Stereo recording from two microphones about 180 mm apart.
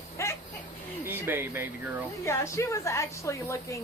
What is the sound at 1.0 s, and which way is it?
Speech, 10° right (ahead or behind).